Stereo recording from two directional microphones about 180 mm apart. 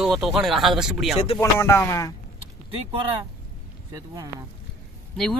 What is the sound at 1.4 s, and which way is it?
Speech, 15° left (ahead or behind).